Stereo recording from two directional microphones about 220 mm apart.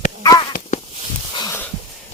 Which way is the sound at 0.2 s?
20° left (ahead or behind).